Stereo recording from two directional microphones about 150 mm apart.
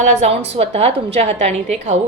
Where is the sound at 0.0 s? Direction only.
50° right (ahead or behind).